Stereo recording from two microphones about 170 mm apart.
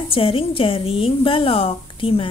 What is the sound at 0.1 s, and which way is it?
A woman's voice, 35° left (ahead or behind).